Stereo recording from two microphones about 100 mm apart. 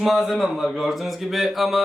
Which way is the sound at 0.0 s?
Centre (ahead or behind).